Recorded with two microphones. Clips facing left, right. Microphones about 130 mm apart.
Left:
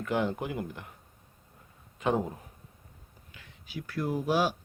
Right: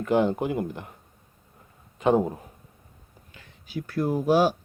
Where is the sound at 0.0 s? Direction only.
30° right (ahead or behind).